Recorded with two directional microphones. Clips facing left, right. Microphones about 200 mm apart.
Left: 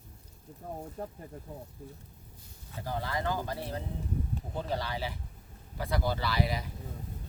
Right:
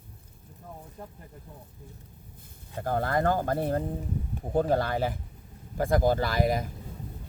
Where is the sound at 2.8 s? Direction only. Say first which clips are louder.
Right 8 dB; 50° right (ahead or behind).